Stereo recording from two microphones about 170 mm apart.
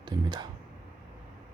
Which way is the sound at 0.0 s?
25° right (ahead or behind).